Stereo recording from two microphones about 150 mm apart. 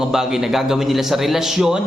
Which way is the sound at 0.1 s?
Centre (ahead or behind).